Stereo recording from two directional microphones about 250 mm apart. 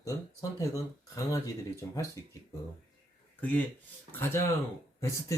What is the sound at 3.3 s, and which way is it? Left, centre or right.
Speech, centre.